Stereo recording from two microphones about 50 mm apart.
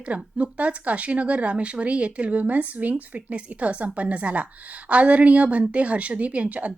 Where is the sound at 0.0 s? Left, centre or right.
Right.